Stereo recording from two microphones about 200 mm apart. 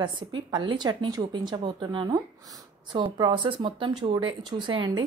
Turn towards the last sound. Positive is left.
turn(degrees=-25)  # may be behind; listen again after turning